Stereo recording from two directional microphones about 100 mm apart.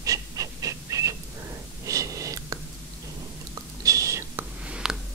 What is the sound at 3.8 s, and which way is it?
Whispering, 35° right (ahead or behind).